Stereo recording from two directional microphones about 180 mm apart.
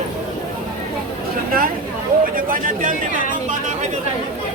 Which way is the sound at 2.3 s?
50° right (ahead or behind).